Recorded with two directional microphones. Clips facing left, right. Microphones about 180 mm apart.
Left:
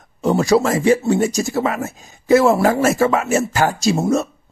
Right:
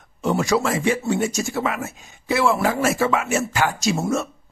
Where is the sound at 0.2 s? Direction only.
35° left (ahead or behind).